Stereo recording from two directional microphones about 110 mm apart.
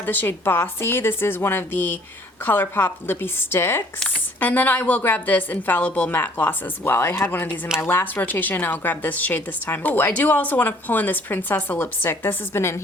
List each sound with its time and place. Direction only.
0.0 s a woman's voice: 20° left (ahead or behind)